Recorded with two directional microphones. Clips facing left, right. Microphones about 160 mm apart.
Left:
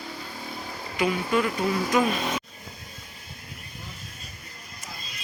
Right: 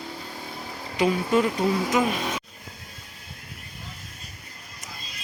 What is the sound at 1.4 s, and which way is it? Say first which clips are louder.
Speech: right 2 dB; 20° right (ahead or behind).